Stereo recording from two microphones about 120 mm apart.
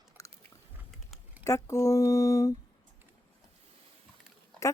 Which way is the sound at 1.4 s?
25° left (ahead or behind).